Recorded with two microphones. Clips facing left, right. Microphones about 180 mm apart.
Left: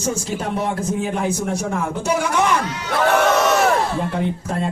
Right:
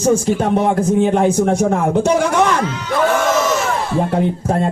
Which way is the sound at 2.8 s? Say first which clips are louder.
Left 1 dB; 65° left (ahead or behind).